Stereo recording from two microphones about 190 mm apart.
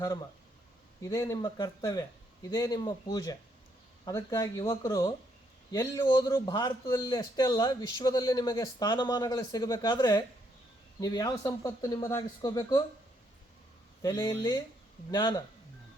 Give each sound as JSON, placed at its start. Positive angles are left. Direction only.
{"t": 1.0, "sound": "a man's voice", "side_deg": 15}
{"t": 14.0, "sound": "a man's voice", "side_deg": 20}